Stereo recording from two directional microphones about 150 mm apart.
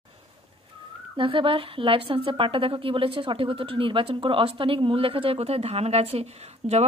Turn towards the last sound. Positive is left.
turn(degrees=-45)  # may be behind; listen again after turning